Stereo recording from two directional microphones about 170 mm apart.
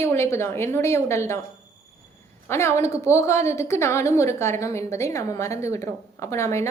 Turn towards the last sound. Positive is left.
turn(degrees=15)  # may be behind; listen again after turning